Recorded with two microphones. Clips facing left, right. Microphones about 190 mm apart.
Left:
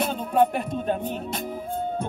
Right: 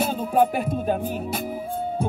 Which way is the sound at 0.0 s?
5° right (ahead or behind).